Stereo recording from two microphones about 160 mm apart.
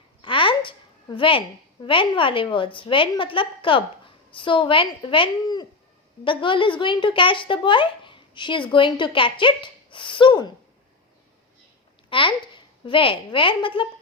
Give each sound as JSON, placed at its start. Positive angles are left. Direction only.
{"t": 0.2, "sound": "a woman's voice", "side_deg": 30}
{"t": 12.0, "sound": "speech", "side_deg": 30}